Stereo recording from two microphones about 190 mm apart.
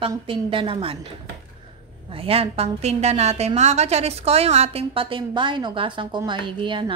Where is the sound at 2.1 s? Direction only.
30° right (ahead or behind).